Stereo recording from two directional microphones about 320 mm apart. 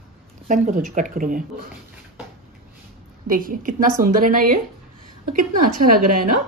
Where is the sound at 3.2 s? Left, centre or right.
Right.